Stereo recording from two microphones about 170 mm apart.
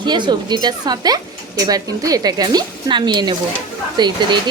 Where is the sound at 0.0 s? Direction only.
25° right (ahead or behind).